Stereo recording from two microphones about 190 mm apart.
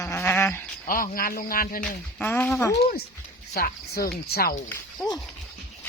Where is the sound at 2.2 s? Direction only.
10° left (ahead or behind).